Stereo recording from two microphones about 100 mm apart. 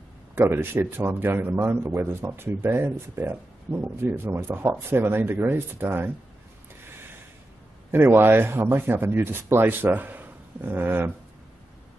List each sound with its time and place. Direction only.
0.4 s speech: 20° right (ahead or behind)
7.9 s speech: 25° right (ahead or behind)